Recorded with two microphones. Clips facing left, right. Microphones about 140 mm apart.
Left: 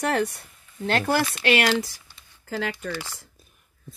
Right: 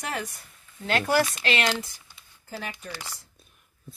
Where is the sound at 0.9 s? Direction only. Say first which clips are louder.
Left 2 dB; 50° left (ahead or behind).